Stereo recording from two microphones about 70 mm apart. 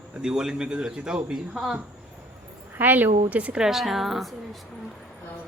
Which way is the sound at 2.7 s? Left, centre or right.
Right.